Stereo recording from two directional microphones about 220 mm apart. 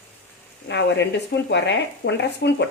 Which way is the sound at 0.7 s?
50° left (ahead or behind).